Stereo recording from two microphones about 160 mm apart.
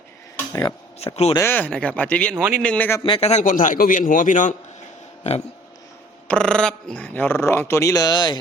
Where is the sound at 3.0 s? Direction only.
35° left (ahead or behind).